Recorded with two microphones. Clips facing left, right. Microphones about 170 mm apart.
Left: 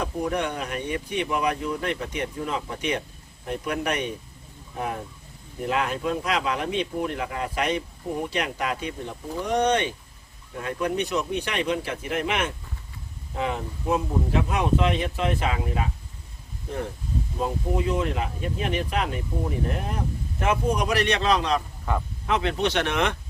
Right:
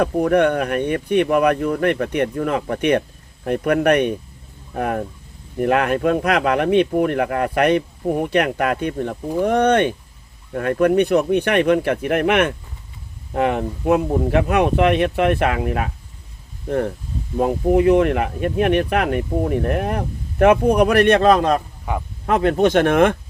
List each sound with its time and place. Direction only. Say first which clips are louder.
0.0 s speech: right 11 dB; 60° right (ahead or behind)
21.9 s speech: right 3 dB; 15° right (ahead or behind)
22.3 s speech: right 9 dB; 50° right (ahead or behind)